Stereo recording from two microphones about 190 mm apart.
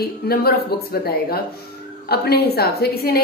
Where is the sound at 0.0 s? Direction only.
55° left (ahead or behind).